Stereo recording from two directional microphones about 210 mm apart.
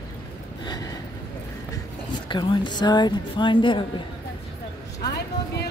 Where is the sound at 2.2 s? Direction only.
20° left (ahead or behind).